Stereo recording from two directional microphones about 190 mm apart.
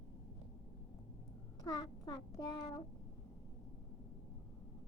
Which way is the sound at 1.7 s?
20° left (ahead or behind).